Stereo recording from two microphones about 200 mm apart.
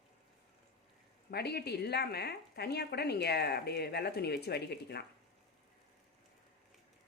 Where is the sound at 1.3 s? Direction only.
55° left (ahead or behind).